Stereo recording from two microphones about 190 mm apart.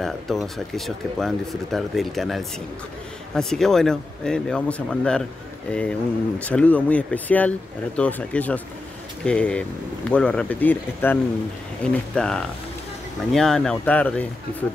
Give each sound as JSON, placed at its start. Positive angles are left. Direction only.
{"t": 0.0, "sound": "speech", "side_deg": 0}